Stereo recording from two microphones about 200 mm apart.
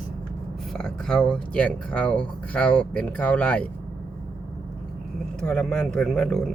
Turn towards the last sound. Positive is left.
turn(degrees=0)  # may be behind; listen again after turning